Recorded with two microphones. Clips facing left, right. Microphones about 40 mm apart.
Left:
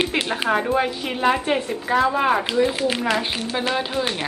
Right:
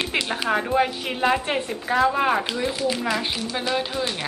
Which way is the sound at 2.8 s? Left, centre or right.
Left.